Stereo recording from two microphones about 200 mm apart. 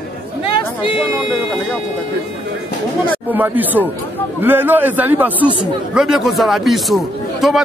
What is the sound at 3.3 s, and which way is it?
Speech, 10° right (ahead or behind).